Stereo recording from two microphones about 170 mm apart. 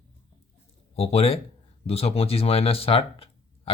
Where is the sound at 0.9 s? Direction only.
35° left (ahead or behind).